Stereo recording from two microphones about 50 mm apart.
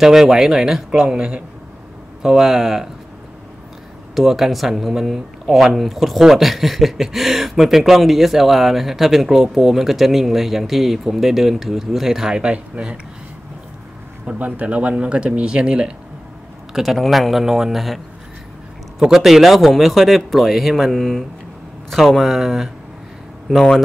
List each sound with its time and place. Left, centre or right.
0.0 s speech: centre
1.0 s speech: centre
2.2 s speech: centre
4.1 s speech: centre
12.8 s speech: right
14.2 s speech: right
16.7 s speech: centre